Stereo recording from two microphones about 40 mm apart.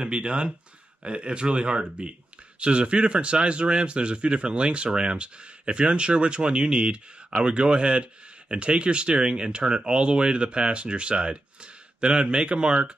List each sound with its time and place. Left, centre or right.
0.0 s speech: right